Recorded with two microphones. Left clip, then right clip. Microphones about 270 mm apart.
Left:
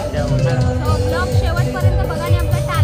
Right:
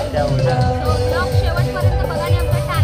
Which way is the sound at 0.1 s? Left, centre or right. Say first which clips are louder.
Right 3 dB; centre.